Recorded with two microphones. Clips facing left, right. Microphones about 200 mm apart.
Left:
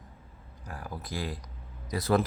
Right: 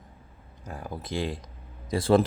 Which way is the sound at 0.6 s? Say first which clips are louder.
Right 3 dB; 20° right (ahead or behind).